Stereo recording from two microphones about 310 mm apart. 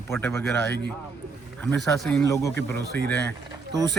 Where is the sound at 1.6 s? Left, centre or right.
Centre.